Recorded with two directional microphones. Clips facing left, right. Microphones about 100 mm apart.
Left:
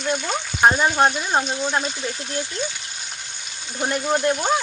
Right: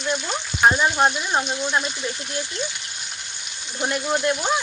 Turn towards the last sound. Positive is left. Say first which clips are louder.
# left 2 dB
turn(degrees=40)  # may be behind; listen again after turning